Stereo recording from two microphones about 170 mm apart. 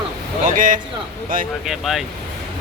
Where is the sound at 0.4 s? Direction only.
50° right (ahead or behind).